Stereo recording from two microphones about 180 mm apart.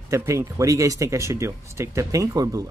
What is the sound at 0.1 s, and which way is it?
Speech, 15° right (ahead or behind).